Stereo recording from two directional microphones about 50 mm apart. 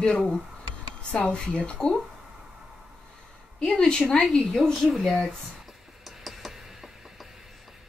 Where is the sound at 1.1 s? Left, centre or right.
Centre.